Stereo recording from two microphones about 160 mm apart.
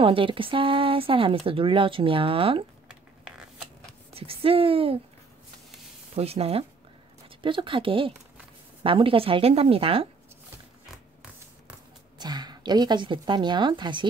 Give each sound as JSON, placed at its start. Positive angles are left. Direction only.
{"t": 0.0, "sound": "speech", "side_deg": -35}
{"t": 4.1, "sound": "speech", "side_deg": -35}
{"t": 6.1, "sound": "speech", "side_deg": -40}
{"t": 12.2, "sound": "a woman's voice", "side_deg": -25}